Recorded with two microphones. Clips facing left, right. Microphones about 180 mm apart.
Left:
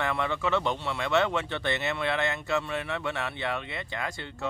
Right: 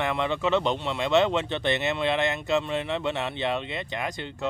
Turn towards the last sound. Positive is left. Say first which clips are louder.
# right 3 dB
turn(degrees=-20)  # may be behind; listen again after turning